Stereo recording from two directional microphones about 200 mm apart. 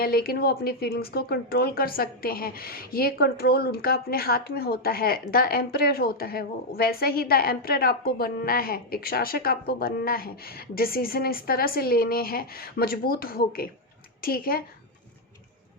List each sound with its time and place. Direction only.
0.0 s speech: 50° left (ahead or behind)